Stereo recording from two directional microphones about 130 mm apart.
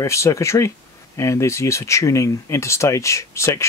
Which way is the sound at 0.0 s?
20° left (ahead or behind).